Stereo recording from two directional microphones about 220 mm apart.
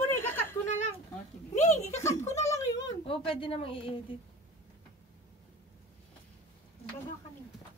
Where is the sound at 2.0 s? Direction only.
15° left (ahead or behind).